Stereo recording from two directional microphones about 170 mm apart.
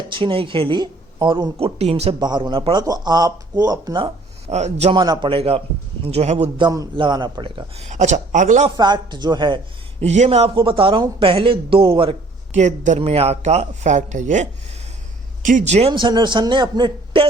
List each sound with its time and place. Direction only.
0.1 s speech: 30° right (ahead or behind)
6.6 s speech: 25° right (ahead or behind)
7.9 s a man's voice: 45° right (ahead or behind)
8.7 s speech: 25° right (ahead or behind)
10.0 s speech: 40° right (ahead or behind)
12.5 s a man's voice: 45° right (ahead or behind)
15.4 s speech: 45° right (ahead or behind)
15.9 s speech: 30° right (ahead or behind)